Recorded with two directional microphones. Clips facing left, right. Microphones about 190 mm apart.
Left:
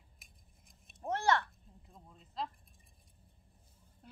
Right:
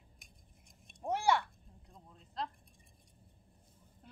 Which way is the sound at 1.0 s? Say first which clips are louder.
Even; 10° right (ahead or behind).